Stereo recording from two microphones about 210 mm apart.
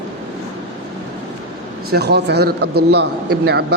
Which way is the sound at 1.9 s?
50° right (ahead or behind).